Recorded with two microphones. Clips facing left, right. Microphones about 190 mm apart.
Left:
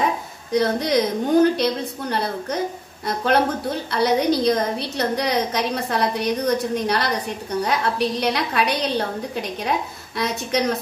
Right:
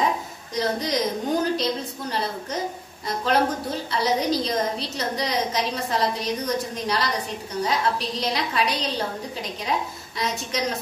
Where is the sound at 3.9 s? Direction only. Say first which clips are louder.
Left 4 dB; 60° left (ahead or behind).